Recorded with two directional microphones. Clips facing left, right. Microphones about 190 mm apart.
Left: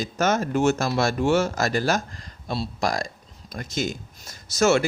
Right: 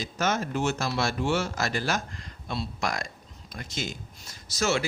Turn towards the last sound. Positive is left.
turn(degrees=50)  # may be behind; listen again after turning